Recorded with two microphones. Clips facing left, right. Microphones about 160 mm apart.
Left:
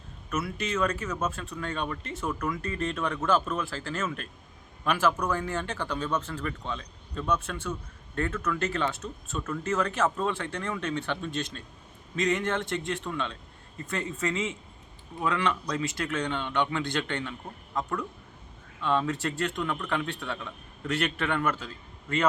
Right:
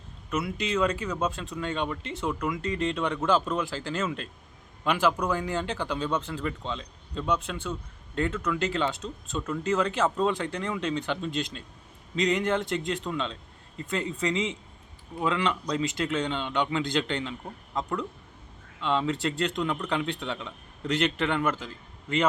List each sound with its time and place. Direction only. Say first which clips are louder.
0.3 s a man's voice: right 2 dB; 15° right (ahead or behind)